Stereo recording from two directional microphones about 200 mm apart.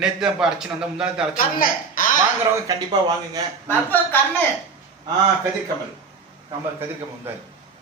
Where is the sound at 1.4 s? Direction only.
45° left (ahead or behind).